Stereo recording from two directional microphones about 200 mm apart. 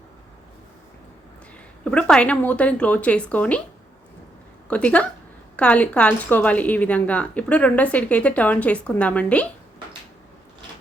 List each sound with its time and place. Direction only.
1.8 s a woman's voice: 5° left (ahead or behind)
4.7 s a woman's voice: 5° left (ahead or behind)